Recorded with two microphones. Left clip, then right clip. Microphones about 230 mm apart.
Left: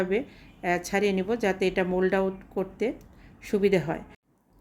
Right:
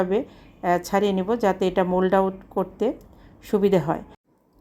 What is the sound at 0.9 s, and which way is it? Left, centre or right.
Speech, centre.